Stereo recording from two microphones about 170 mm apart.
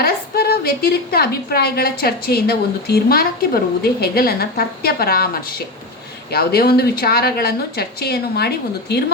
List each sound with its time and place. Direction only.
0.0 s a woman's voice: 65° left (ahead or behind)